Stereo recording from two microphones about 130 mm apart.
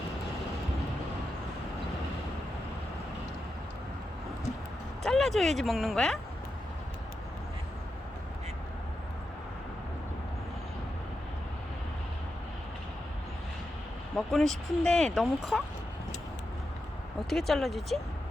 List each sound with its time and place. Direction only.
5.0 s speech: centre (ahead or behind)
14.2 s speech: 5° left (ahead or behind)
17.2 s speech: centre (ahead or behind)